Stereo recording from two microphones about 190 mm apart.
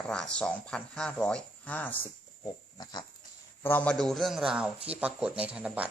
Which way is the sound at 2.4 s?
20° left (ahead or behind).